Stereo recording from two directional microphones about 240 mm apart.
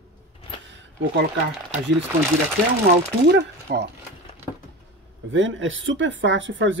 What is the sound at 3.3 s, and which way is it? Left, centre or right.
Speech, right.